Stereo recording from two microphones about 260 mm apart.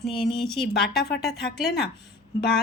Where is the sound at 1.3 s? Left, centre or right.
Left.